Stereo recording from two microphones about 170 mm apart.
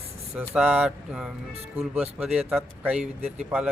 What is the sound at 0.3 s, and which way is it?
A man's voice, 5° right (ahead or behind).